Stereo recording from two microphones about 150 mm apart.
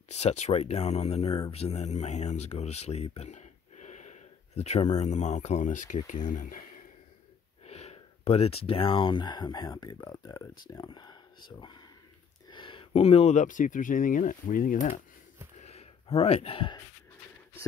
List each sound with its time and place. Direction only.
0.1 s speech: 45° left (ahead or behind)
7.6 s speech: 45° left (ahead or behind); by 15.0 s 60° left (ahead or behind)
15.6 s a sound: 45° left (ahead or behind)